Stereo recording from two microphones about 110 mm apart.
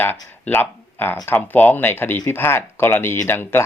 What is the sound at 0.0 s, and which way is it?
Speech, 20° left (ahead or behind).